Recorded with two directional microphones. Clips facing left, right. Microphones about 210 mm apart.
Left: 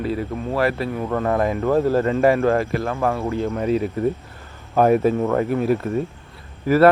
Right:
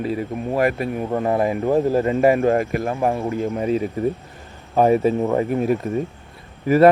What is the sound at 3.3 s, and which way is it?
Speech, 5° right (ahead or behind).